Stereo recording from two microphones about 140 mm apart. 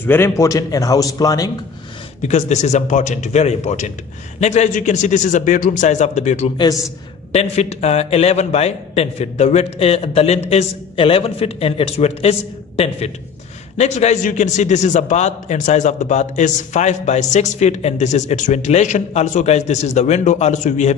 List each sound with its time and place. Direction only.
0.0 s a man's voice: 15° left (ahead or behind)
2.2 s a man's voice: 55° left (ahead or behind)